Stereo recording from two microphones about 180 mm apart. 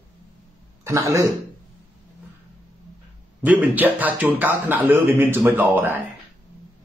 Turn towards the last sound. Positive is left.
turn(degrees=-10)  # may be behind; listen again after turning